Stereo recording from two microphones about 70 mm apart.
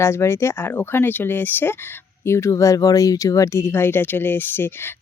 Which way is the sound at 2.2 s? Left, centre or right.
Left.